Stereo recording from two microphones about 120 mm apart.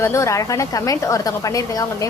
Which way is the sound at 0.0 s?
25° left (ahead or behind).